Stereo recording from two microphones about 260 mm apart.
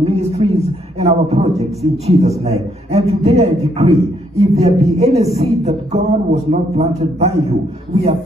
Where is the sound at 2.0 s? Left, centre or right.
Right.